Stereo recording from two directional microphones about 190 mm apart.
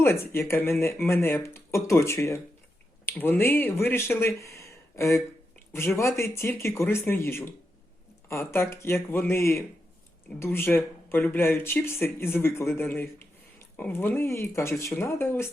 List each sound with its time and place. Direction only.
0.0 s speech: 15° left (ahead or behind)
4.4 s a sound: 15° left (ahead or behind)
6.0 s speech: 15° left (ahead or behind)